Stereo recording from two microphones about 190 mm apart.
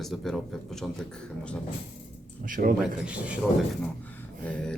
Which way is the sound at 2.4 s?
45° right (ahead or behind).